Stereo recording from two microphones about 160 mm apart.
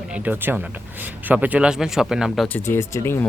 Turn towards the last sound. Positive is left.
turn(degrees=15)  # may be behind; listen again after turning